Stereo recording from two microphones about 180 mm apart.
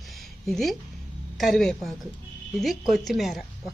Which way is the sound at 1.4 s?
Centre (ahead or behind).